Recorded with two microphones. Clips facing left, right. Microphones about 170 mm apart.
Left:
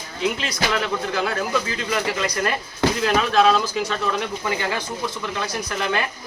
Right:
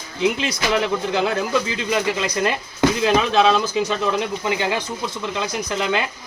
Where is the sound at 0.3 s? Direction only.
20° right (ahead or behind).